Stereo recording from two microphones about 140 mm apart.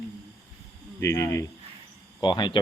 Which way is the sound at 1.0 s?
20° left (ahead or behind).